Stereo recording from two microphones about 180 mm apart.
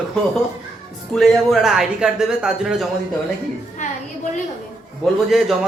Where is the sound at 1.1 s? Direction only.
Centre (ahead or behind).